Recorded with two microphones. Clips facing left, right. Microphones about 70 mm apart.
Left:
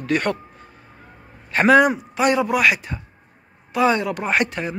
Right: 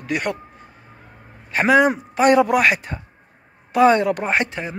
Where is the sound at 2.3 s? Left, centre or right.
Right.